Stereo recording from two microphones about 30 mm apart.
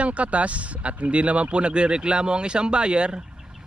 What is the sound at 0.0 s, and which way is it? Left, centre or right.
Speech, right.